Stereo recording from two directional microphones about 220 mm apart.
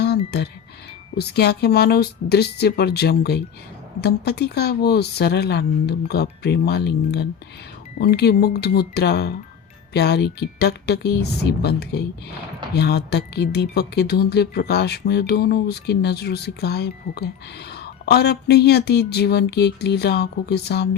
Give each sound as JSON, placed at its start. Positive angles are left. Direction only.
{"t": 0.0, "sound": "music", "side_deg": 50}
{"t": 1.1, "sound": "speech", "side_deg": 45}